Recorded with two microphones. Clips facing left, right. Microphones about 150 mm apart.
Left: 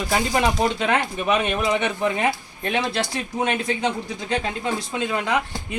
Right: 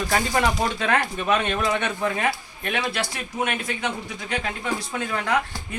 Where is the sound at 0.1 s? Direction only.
15° left (ahead or behind).